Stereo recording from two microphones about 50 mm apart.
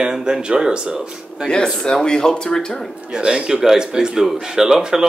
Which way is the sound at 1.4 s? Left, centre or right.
Centre.